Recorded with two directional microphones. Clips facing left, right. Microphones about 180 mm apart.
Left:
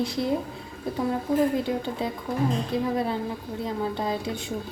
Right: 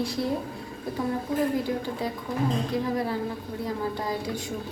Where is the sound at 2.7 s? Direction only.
25° left (ahead or behind).